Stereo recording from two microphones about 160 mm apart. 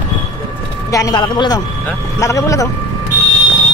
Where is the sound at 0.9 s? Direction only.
25° left (ahead or behind).